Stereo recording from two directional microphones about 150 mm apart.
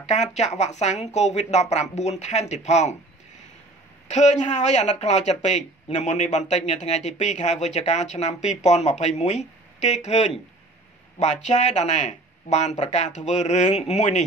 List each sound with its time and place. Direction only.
0.0 s speech: 50° left (ahead or behind)
4.1 s speech: 50° left (ahead or behind)
11.4 s speech: 50° left (ahead or behind)